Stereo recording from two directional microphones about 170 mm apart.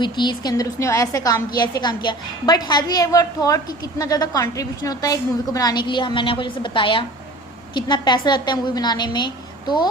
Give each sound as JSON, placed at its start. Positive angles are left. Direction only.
{"t": 0.0, "sound": "a woman's voice", "side_deg": 25}